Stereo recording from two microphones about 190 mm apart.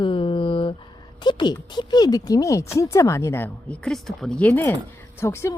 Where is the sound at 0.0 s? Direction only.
25° left (ahead or behind).